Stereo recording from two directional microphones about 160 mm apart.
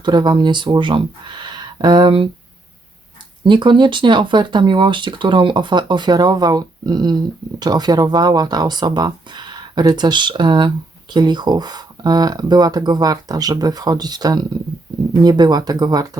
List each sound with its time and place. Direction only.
0.0 s speech: 25° right (ahead or behind)
3.4 s speech: 30° right (ahead or behind)